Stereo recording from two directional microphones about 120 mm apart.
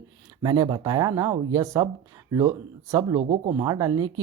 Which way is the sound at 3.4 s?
35° right (ahead or behind).